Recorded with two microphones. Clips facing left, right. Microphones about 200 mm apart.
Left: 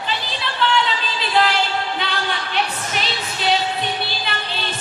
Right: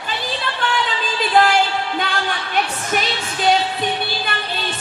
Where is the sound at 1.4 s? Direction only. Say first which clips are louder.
Right 3 dB; 50° right (ahead or behind).